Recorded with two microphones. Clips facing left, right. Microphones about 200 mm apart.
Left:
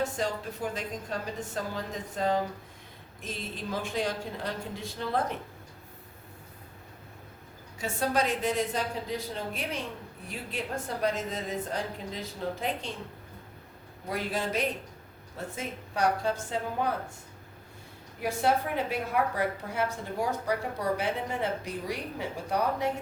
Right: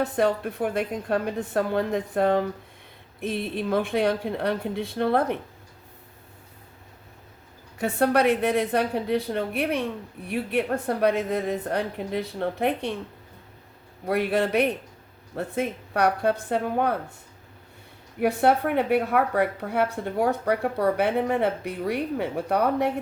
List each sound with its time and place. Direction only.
0.0 s speech: 60° right (ahead or behind)
7.8 s speech: 60° right (ahead or behind)
14.1 s speech: 60° right (ahead or behind)
18.2 s speech: 60° right (ahead or behind)